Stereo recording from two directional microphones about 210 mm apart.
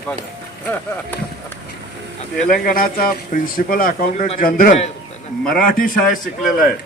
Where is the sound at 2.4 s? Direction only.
40° left (ahead or behind).